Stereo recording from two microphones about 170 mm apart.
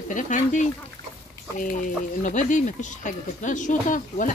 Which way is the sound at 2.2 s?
45° left (ahead or behind).